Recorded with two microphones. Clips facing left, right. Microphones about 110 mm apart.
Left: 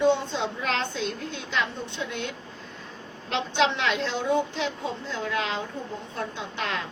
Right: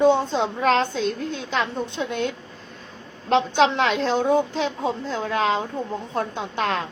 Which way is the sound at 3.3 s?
45° right (ahead or behind).